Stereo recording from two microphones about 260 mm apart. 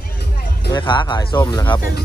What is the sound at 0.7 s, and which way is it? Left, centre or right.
Speech, centre.